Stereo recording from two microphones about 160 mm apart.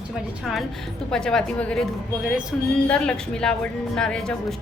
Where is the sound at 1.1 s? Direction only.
5° left (ahead or behind).